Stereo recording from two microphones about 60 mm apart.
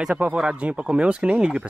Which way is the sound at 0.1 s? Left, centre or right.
Right.